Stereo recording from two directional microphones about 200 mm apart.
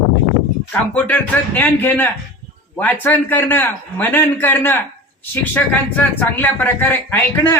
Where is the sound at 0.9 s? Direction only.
5° left (ahead or behind).